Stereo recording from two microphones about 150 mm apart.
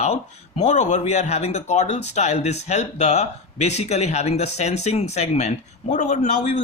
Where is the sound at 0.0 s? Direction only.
45° left (ahead or behind).